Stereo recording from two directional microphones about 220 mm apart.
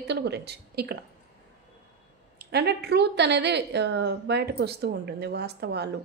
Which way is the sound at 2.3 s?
50° right (ahead or behind).